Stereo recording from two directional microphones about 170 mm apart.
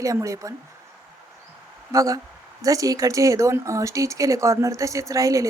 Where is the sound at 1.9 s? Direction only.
20° right (ahead or behind).